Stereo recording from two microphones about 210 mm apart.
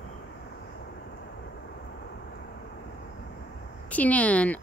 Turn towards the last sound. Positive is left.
turn(degrees=5)  # may be behind; listen again after turning